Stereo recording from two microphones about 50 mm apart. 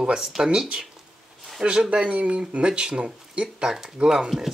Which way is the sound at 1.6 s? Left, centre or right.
Right.